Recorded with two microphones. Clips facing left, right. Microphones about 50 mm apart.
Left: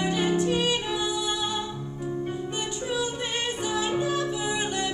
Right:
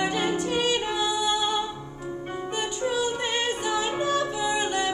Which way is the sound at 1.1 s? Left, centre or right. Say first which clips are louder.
Right 4 dB; right.